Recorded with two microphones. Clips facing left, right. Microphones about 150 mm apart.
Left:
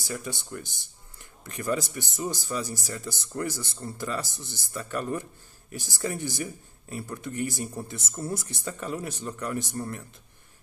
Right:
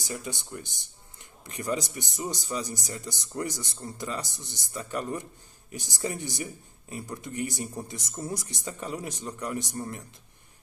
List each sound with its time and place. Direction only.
0.0 s a man's voice: 15° right (ahead or behind)
1.6 s a man's voice: 15° right (ahead or behind)